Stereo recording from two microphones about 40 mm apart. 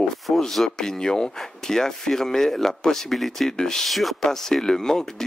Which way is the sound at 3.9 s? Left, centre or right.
Centre.